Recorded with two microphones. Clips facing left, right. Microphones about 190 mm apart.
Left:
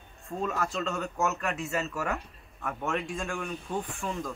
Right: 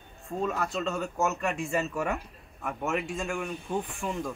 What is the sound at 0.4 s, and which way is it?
Speech, centre (ahead or behind).